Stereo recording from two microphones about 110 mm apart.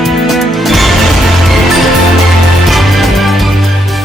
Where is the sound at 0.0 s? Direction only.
Centre (ahead or behind).